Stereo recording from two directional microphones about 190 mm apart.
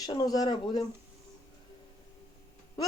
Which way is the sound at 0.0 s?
20° left (ahead or behind).